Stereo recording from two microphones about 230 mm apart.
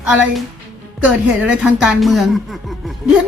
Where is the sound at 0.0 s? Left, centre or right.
Centre.